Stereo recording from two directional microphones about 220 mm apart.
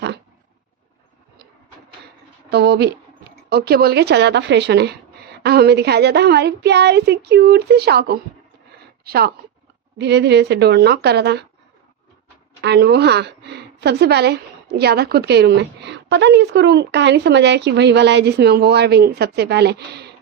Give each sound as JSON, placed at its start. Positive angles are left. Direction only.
{"t": 2.5, "sound": "a woman's voice", "side_deg": -50}
{"t": 12.6, "sound": "a woman's voice", "side_deg": -50}